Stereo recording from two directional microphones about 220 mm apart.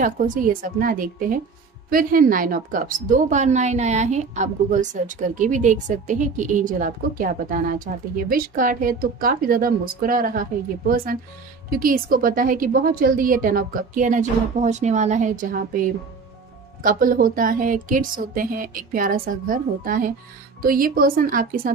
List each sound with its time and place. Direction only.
0.0 s a woman's voice: 35° right (ahead or behind)
11.7 s a woman's voice: 40° right (ahead or behind)